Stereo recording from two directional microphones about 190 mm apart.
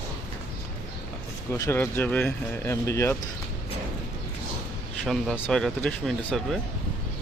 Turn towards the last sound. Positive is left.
turn(degrees=0)  # may be behind; listen again after turning